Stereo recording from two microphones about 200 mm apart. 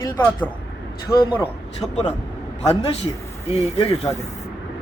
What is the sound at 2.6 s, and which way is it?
A man's voice, 30° left (ahead or behind).